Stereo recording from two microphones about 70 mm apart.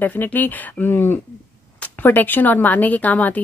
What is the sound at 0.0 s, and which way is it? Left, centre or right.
A woman's voice, left.